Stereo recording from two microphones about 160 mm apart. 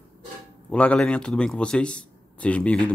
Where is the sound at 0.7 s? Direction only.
5° left (ahead or behind).